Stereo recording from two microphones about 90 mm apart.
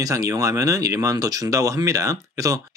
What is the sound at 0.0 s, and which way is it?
Speech, 35° right (ahead or behind).